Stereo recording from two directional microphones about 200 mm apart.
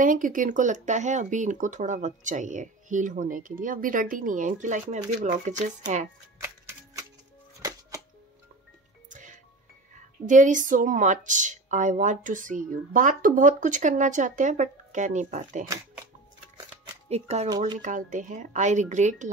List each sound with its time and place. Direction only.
0.0 s speech: 40° right (ahead or behind)
6.4 s a sound: 15° right (ahead or behind)
10.2 s speech: 40° right (ahead or behind)
16.5 s shuffling cards: 25° right (ahead or behind)
17.8 s speech: 35° right (ahead or behind)